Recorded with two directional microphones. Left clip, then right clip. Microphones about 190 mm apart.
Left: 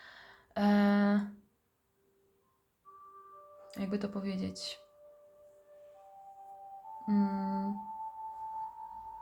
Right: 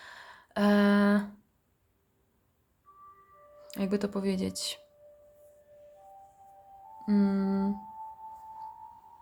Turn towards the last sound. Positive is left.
turn(degrees=-35)  # may be behind; listen again after turning